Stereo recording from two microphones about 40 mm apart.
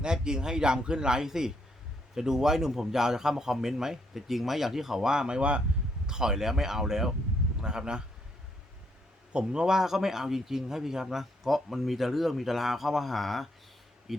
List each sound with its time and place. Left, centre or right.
0.0 s a man's voice: centre
5.4 s a man's voice: right
6.1 s a man's voice: centre
9.3 s a man's voice: right; by 14.2 s centre